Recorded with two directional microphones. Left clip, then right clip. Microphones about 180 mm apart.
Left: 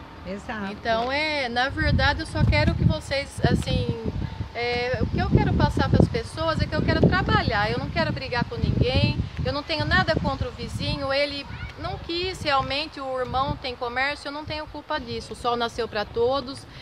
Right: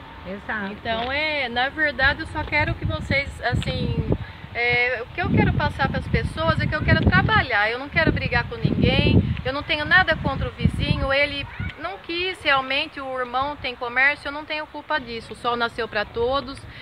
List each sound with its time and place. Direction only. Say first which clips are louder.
0.8 s speech: left 1 dB; 45° left (ahead or behind)
3.5 s speech: left 1 dB; 20° left (ahead or behind)
4.6 s speech: right 5 dB; 5° right (ahead or behind)